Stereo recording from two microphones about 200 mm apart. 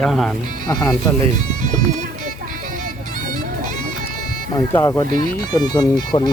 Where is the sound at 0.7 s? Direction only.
20° left (ahead or behind).